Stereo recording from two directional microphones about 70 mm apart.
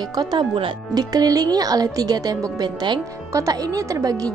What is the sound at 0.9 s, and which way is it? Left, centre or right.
Speech, right.